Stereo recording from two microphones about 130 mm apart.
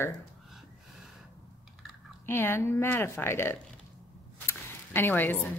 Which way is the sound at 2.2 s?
20° left (ahead or behind).